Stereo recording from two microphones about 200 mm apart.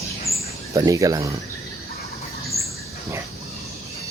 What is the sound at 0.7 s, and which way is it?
Speech, 15° right (ahead or behind).